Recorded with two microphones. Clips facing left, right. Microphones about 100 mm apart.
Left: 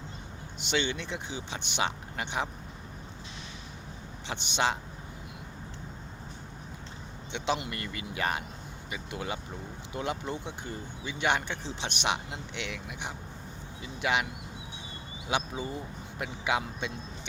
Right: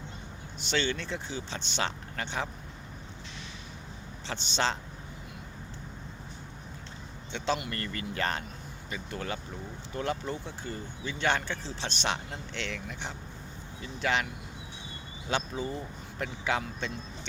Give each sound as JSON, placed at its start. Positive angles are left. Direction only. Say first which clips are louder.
{"t": 0.6, "sound": "speech", "louder": "even", "side_deg": 15}
{"t": 4.3, "sound": "speech", "louder": "left 1 dB", "side_deg": 15}
{"t": 7.3, "sound": "speech", "louder": "even", "side_deg": 20}
{"t": 15.3, "sound": "speech", "louder": "even", "side_deg": 15}